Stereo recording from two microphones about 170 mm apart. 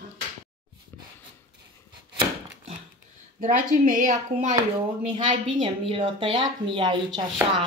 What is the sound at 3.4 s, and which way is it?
A woman's voice, 50° right (ahead or behind).